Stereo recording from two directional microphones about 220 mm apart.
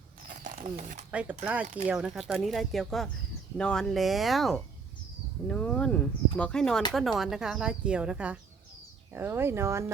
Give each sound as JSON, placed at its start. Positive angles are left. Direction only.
{"t": 0.3, "sound": "dog", "side_deg": -35}
{"t": 1.1, "sound": "speech", "side_deg": -5}